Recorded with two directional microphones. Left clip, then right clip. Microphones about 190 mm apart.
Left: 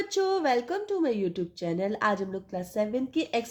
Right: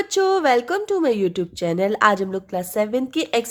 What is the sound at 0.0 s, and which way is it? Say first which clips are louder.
Speech: right 8 dB; 30° right (ahead or behind).